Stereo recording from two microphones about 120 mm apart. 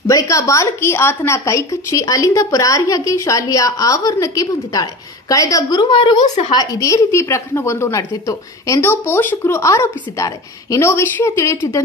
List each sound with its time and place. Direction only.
0.1 s a woman's voice: 25° left (ahead or behind)